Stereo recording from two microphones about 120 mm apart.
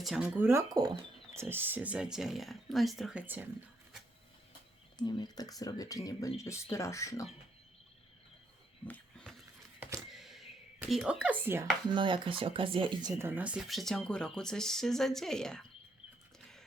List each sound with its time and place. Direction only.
0.0 s speech: centre (ahead or behind)
0.3 s speech: 15° right (ahead or behind)
0.7 s speech: 35° right (ahead or behind)
1.4 s speech: 20° right (ahead or behind)
4.9 s speech: 35° left (ahead or behind)
8.9 s wild animals: 5° left (ahead or behind)
10.1 s a sound: centre (ahead or behind); by 11.7 s 20° right (ahead or behind)
11.9 s speech: 45° right (ahead or behind)
13.1 s speech: 15° right (ahead or behind); by 15.6 s 5° left (ahead or behind)